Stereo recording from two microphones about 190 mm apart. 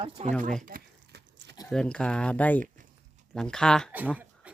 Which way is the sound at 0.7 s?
55° right (ahead or behind).